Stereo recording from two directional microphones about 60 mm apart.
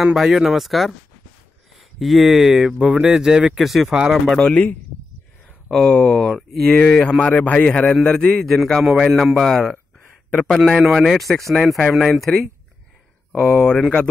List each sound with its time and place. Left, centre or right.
0.0 s speech: centre
4.5 s a man's voice: centre
5.7 s a man's voice: centre
7.2 s a man's voice: left; by 10.8 s centre
10.8 s speech: centre
13.3 s a man's voice: centre